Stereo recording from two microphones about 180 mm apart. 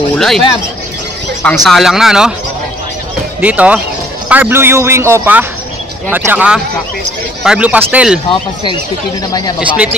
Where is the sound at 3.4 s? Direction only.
10° right (ahead or behind).